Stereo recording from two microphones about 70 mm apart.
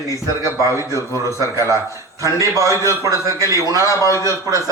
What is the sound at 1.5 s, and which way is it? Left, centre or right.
A man's voice, right.